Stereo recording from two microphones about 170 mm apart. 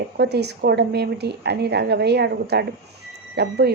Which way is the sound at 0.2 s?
75° right (ahead or behind).